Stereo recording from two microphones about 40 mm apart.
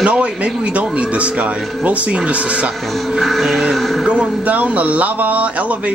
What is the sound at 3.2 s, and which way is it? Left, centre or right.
Music, centre.